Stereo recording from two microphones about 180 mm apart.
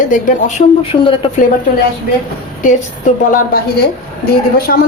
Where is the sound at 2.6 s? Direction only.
45° left (ahead or behind).